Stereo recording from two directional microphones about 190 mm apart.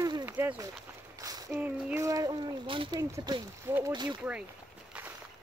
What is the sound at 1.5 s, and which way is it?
Speech, 5° right (ahead or behind).